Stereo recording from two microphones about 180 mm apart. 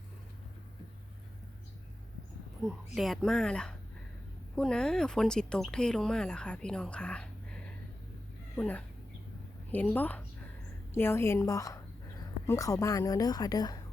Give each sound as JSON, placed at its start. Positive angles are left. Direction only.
{"t": 2.6, "sound": "speech", "side_deg": 0}
{"t": 8.5, "sound": "a woman's voice", "side_deg": 10}